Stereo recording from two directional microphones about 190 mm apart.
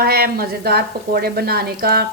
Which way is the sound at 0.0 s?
55° right (ahead or behind).